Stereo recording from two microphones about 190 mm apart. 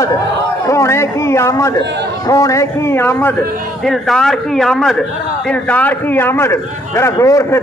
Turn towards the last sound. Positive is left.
turn(degrees=15)  # may be behind; listen again after turning